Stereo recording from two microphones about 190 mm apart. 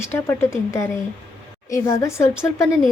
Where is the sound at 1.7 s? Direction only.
15° left (ahead or behind).